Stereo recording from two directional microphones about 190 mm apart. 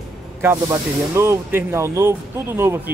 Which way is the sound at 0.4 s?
15° right (ahead or behind).